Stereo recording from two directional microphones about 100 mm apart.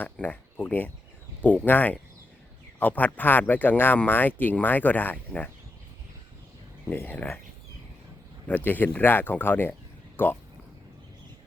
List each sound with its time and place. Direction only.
0.0 s speech: 15° left (ahead or behind)
6.9 s speech: 20° left (ahead or behind)
8.4 s speech: 20° left (ahead or behind)